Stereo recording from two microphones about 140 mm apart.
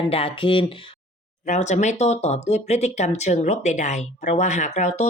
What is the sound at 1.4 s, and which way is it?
Speech, 60° left (ahead or behind).